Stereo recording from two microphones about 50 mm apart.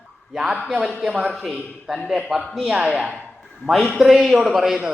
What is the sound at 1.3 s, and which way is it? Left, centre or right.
Mantra, centre.